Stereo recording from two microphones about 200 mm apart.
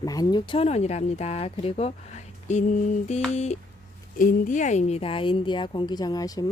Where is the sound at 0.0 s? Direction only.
20° left (ahead or behind).